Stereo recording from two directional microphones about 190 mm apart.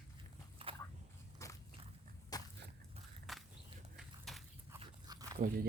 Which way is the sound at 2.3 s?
20° left (ahead or behind).